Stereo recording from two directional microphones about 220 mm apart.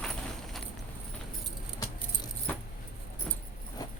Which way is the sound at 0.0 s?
Centre (ahead or behind).